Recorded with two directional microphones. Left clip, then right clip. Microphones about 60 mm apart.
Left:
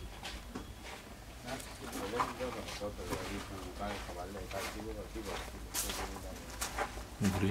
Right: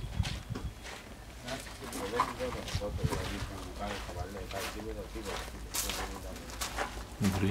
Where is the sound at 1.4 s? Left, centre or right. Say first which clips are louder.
Right 3 dB; right.